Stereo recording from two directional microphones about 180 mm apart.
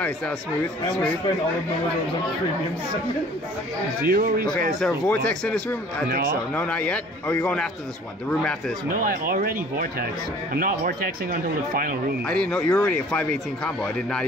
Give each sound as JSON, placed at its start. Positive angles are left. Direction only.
{"t": 4.1, "sound": "speech", "side_deg": -55}
{"t": 4.6, "sound": "speech", "side_deg": 0}
{"t": 6.0, "sound": "speech", "side_deg": -55}
{"t": 6.5, "sound": "a man's voice", "side_deg": 5}
{"t": 8.9, "sound": "speech", "side_deg": -50}
{"t": 12.3, "sound": "speech", "side_deg": 5}